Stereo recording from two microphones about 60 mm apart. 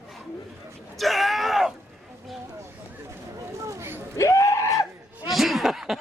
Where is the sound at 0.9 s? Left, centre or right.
Centre.